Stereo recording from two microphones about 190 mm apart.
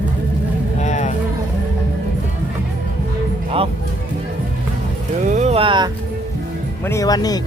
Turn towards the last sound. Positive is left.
turn(degrees=20)  # may be behind; listen again after turning